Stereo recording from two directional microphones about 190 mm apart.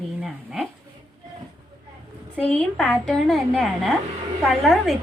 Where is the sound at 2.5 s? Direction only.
5° left (ahead or behind).